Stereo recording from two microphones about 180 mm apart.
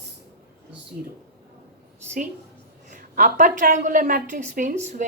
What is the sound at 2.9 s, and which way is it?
A woman's voice, 45° right (ahead or behind).